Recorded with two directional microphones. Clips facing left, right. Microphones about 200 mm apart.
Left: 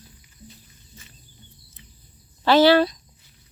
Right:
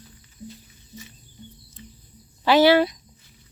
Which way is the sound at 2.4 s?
15° right (ahead or behind).